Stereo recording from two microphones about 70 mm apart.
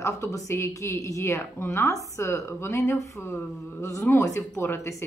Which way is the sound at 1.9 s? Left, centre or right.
Left.